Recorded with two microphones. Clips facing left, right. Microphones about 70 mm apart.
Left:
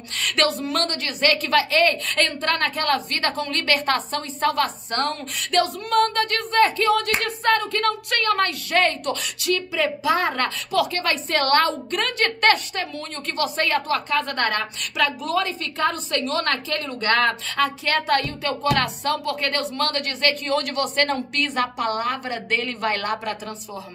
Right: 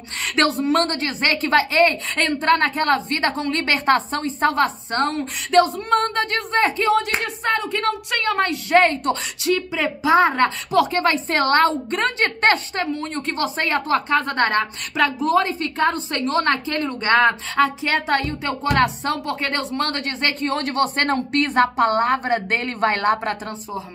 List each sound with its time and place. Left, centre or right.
0.2 s a woman's voice: right